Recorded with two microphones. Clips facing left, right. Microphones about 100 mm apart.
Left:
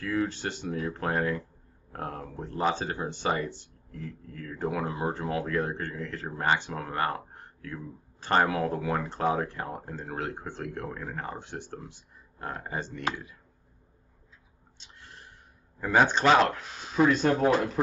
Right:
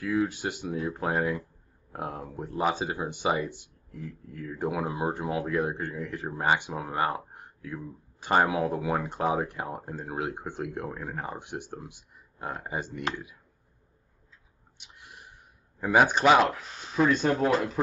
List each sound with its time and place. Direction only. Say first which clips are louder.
0.0 s speech: right 2 dB; 10° right (ahead or behind)
14.8 s a sound: even; 15° right (ahead or behind)
15.8 s speech: right 1 dB; 10° right (ahead or behind)